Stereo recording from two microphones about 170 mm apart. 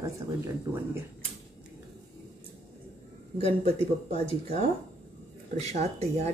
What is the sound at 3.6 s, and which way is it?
Speech, 40° right (ahead or behind).